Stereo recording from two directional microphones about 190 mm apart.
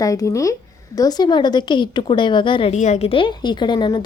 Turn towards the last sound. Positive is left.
turn(degrees=25)  # may be behind; listen again after turning